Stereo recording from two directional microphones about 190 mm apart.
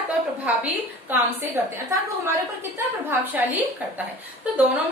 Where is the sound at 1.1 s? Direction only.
10° right (ahead or behind).